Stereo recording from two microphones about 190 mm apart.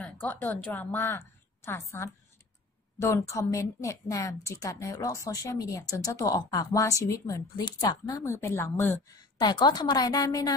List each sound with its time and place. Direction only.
0.0 s a woman's voice: 10° left (ahead or behind)
9.4 s a woman's voice: 25° left (ahead or behind)